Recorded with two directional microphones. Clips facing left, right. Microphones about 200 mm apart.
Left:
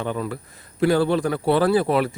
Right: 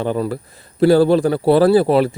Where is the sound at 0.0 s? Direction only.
35° right (ahead or behind).